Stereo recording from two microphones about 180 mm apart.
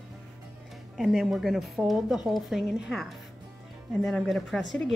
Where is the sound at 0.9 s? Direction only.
Centre (ahead or behind).